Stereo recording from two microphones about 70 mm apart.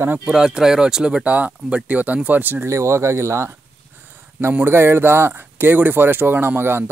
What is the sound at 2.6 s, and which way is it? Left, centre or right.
Speech, right.